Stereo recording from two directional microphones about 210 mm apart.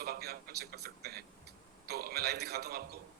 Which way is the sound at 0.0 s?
50° right (ahead or behind).